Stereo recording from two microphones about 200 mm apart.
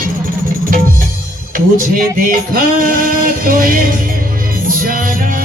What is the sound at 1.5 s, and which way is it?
Speech, 40° right (ahead or behind).